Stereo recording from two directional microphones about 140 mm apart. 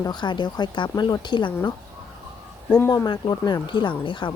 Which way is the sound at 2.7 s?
25° left (ahead or behind).